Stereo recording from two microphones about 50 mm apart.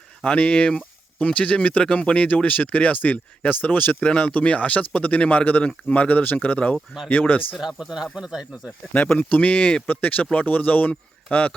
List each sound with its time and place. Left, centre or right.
0.3 s speech: left
7.5 s speech: centre
8.9 s speech: left
9.8 s speech: left